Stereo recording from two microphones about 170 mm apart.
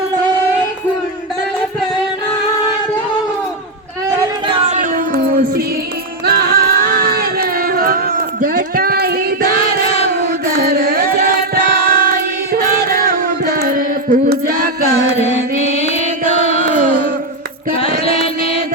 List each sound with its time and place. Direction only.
4.4 s music: 35° right (ahead or behind); by 15.0 s 65° right (ahead or behind)
16.3 s music: 40° left (ahead or behind)
16.6 s a sound: 55° right (ahead or behind)
18.0 s mantra: 35° left (ahead or behind)